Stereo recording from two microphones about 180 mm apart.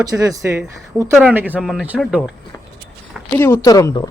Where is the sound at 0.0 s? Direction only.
20° right (ahead or behind).